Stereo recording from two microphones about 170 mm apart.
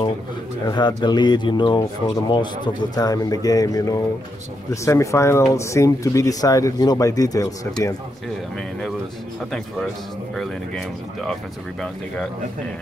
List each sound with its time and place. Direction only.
0.7 s speech: 25° left (ahead or behind)
10.3 s speech: centre (ahead or behind)